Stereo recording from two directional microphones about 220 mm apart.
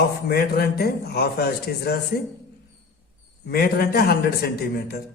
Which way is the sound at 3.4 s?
45° left (ahead or behind).